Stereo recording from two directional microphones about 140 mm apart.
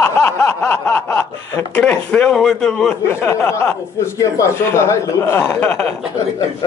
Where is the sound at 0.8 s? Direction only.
10° left (ahead or behind).